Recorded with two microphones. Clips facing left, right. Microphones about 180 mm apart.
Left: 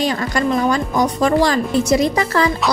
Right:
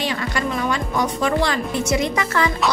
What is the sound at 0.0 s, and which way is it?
A woman's voice, 40° left (ahead or behind).